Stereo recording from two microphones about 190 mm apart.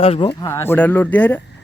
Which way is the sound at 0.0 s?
30° left (ahead or behind).